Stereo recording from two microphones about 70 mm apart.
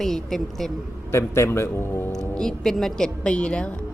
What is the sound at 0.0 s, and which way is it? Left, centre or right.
Speech, centre.